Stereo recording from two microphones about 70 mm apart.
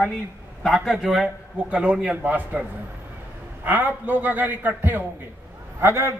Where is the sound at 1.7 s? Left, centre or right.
Centre; by 6.1 s right.